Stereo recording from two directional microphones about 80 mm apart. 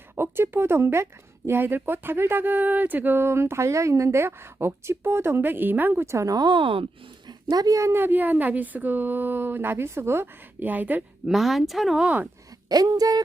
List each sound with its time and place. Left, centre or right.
0.2 s speech: right
6.1 s speech: right
7.3 s speech: right
11.3 s speech: centre
12.0 s speech: centre
12.6 s speech: right